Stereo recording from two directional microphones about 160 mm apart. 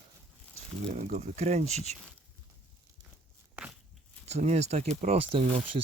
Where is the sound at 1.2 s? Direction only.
40° right (ahead or behind).